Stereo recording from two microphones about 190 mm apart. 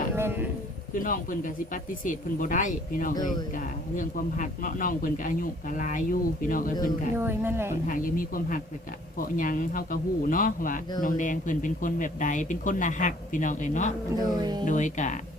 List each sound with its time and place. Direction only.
0.2 s a sound: 10° right (ahead or behind)
0.9 s speech: 45° left (ahead or behind)
7.2 s speech: 10° right (ahead or behind)
7.9 s speech: 45° left (ahead or behind)
14.2 s speech: 20° right (ahead or behind)
14.7 s speech: 40° left (ahead or behind)